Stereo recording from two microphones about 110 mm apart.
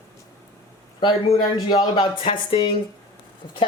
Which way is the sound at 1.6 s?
40° left (ahead or behind).